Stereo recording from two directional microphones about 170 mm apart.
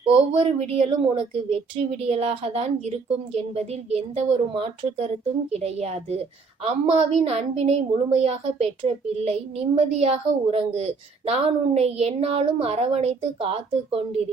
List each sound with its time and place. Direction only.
0.0 s a woman's voice: 35° right (ahead or behind)